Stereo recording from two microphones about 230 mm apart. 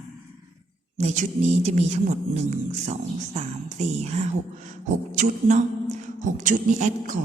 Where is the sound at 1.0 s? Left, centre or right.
Right.